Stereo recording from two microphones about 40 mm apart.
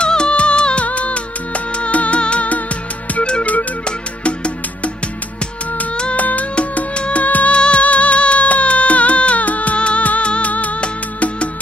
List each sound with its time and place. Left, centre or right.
0.0 s music: left
6.1 s music: left